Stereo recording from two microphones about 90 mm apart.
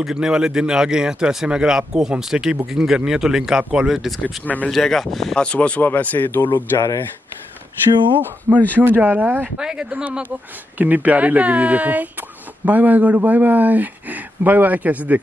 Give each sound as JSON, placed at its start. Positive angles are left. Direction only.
{"t": 0.0, "sound": "speech", "side_deg": -5}
{"t": 4.2, "sound": "speech", "side_deg": 20}
{"t": 4.6, "sound": "speech", "side_deg": 5}
{"t": 8.7, "sound": "speech", "side_deg": -20}
{"t": 9.6, "sound": "speech", "side_deg": -10}